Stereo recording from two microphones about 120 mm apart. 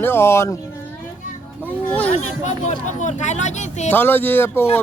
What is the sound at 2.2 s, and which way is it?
Speech, 75° left (ahead or behind).